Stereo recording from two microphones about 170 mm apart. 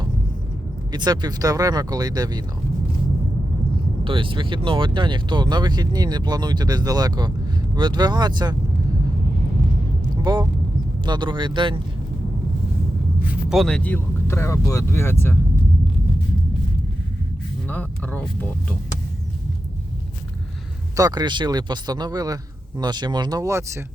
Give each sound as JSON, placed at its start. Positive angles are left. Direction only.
{"t": 0.9, "sound": "speech", "side_deg": -25}
{"t": 4.0, "sound": "speech", "side_deg": -30}
{"t": 10.3, "sound": "speech", "side_deg": -25}
{"t": 13.2, "sound": "speech", "side_deg": 0}
{"t": 17.7, "sound": "a sound", "side_deg": 10}
{"t": 20.9, "sound": "speech", "side_deg": -25}